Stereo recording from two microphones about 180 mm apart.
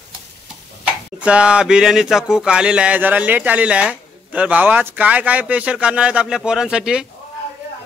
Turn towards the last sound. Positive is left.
turn(degrees=-5)  # may be behind; listen again after turning